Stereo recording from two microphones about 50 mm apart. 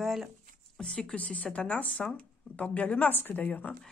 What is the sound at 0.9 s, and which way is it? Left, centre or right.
A man's voice, left.